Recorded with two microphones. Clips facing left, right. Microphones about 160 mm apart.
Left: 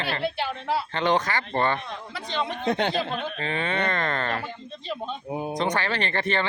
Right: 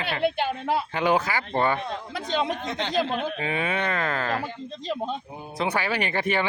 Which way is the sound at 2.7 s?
55° left (ahead or behind).